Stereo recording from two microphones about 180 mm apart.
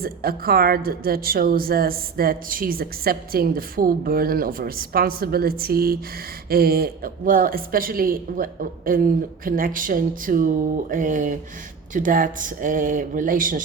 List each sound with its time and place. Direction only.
0.0 s a woman's voice: 55° right (ahead or behind)